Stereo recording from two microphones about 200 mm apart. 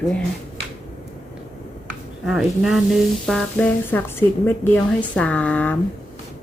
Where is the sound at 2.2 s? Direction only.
Centre (ahead or behind).